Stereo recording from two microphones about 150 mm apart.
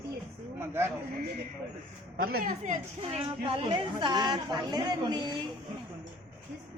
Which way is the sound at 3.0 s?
35° right (ahead or behind).